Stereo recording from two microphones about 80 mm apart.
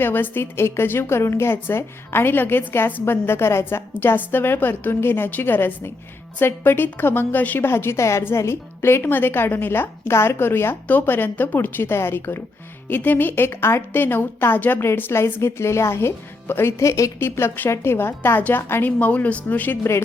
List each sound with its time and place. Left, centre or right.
0.0 s a woman's voice: left